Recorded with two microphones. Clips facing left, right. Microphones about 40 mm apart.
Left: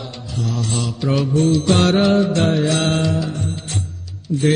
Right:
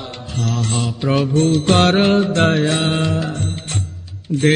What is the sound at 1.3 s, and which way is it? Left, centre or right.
Mantra, right.